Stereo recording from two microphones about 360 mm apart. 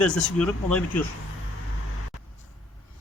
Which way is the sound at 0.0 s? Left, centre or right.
Centre.